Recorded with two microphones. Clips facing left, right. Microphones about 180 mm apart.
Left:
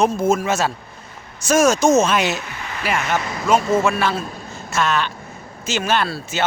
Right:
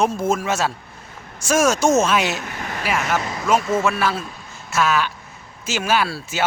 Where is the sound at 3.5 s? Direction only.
30° left (ahead or behind).